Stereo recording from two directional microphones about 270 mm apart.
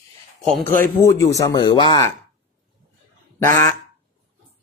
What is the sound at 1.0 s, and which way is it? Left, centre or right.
Speech, centre.